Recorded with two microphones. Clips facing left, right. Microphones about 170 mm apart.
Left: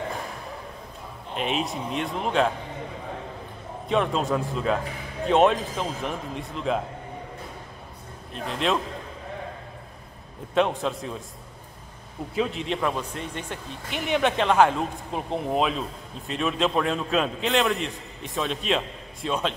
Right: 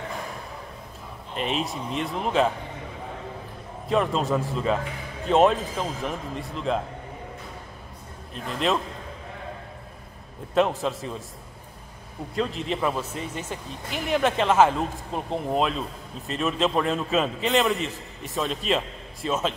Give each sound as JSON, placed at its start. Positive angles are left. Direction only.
{"t": 1.3, "sound": "a man's voice", "side_deg": 0}
{"t": 3.9, "sound": "a man's voice", "side_deg": 0}
{"t": 8.5, "sound": "a man's voice", "side_deg": 0}
{"t": 10.5, "sound": "a man's voice", "side_deg": 0}
{"t": 12.4, "sound": "a man's voice", "side_deg": 0}